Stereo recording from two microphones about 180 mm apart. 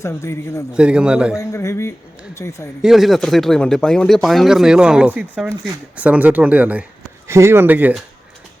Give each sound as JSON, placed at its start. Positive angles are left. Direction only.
{"t": 0.0, "sound": "a man's voice", "side_deg": 15}
{"t": 0.7, "sound": "speech", "side_deg": -5}
{"t": 1.4, "sound": "a man's voice", "side_deg": 15}
{"t": 2.8, "sound": "speech", "side_deg": 0}